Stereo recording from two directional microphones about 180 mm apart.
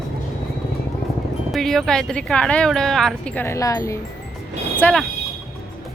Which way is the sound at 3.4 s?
15° left (ahead or behind).